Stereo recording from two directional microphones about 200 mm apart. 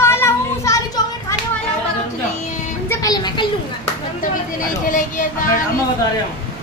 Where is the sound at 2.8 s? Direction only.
20° left (ahead or behind).